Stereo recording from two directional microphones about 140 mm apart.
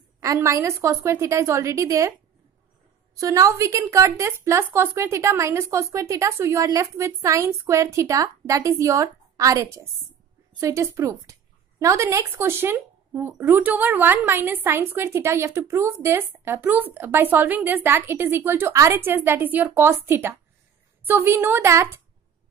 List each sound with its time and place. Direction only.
0.2 s speech: 20° right (ahead or behind)
3.2 s speech: 25° right (ahead or behind)